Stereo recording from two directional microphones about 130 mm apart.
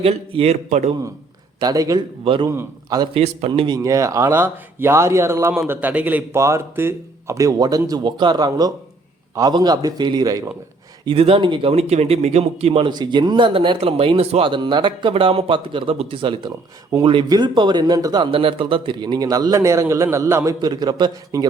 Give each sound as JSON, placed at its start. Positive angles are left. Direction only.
{"t": 0.0, "sound": "speech", "side_deg": -50}
{"t": 1.5, "sound": "speech", "side_deg": -30}
{"t": 2.2, "sound": "speech", "side_deg": -40}
{"t": 2.5, "sound": "speech", "side_deg": -20}
{"t": 3.0, "sound": "speech", "side_deg": -45}
{"t": 3.8, "sound": "speech", "side_deg": -25}
{"t": 11.0, "sound": "speech", "side_deg": -45}
{"t": 12.9, "sound": "speech", "side_deg": -35}